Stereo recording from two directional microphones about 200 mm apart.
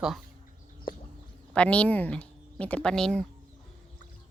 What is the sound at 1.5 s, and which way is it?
Speech, 5° left (ahead or behind).